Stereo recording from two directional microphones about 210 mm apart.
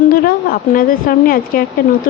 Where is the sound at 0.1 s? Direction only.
45° left (ahead or behind).